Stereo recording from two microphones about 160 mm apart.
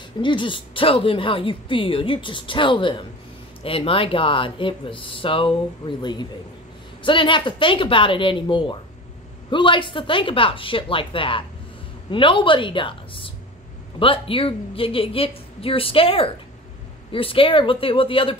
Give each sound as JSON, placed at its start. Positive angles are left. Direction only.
{"t": 0.2, "sound": "speech", "side_deg": 30}